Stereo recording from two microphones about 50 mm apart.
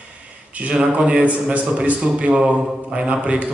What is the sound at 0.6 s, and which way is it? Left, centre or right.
A man's voice, right.